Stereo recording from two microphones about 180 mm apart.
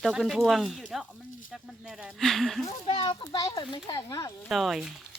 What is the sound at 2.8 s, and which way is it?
A child's voice, 25° left (ahead or behind).